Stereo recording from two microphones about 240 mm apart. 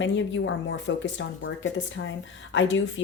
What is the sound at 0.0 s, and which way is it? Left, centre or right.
Speech, left.